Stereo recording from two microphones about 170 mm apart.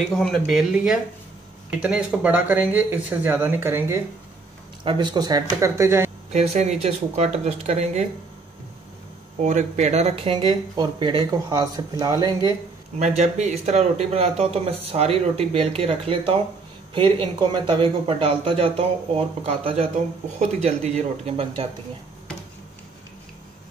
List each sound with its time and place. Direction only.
0.1 s speech: 5° left (ahead or behind); by 4.0 s 15° right (ahead or behind)
4.8 s speech: 25° right (ahead or behind)
6.3 s speech: 40° right (ahead or behind)
9.4 s speech: 45° right (ahead or behind)
10.3 s speech: 25° right (ahead or behind)
13.0 s speech: 40° right (ahead or behind)